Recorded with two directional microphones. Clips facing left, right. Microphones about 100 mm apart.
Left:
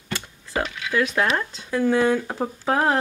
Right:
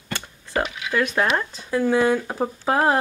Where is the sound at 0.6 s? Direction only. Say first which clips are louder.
Right 1 dB; 10° right (ahead or behind).